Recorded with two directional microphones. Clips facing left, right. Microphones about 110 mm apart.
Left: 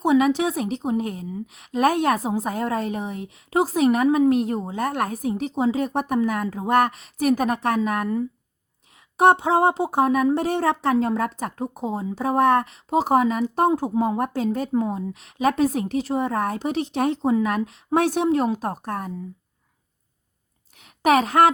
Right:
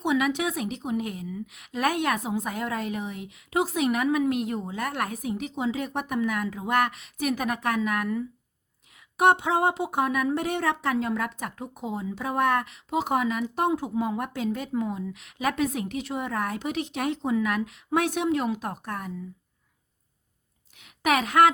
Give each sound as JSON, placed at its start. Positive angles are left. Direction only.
{"t": 0.0, "sound": "speech", "side_deg": 35}
{"t": 20.7, "sound": "a woman's voice", "side_deg": 35}